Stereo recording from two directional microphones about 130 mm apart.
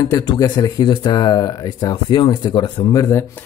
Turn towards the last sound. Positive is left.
turn(degrees=25)  # may be behind; listen again after turning